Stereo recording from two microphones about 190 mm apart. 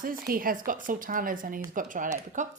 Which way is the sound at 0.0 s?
50° right (ahead or behind).